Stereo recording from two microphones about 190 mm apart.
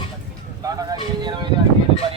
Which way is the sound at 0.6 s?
20° right (ahead or behind).